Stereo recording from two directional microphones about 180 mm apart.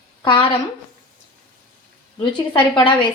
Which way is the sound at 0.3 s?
30° left (ahead or behind).